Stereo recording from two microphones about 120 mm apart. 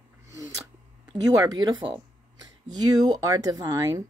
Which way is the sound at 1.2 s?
30° right (ahead or behind).